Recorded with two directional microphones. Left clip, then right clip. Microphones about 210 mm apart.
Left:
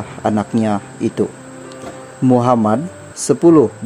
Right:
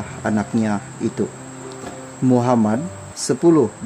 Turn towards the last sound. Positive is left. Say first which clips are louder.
# left 5 dB
turn(degrees=15)  # may be behind; listen again after turning